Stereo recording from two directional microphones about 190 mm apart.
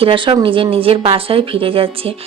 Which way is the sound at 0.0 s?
25° right (ahead or behind).